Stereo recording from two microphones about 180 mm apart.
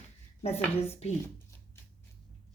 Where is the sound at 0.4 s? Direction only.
35° left (ahead or behind).